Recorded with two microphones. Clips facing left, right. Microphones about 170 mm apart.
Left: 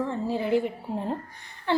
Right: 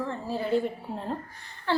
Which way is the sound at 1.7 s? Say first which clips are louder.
Left 2 dB; 20° left (ahead or behind).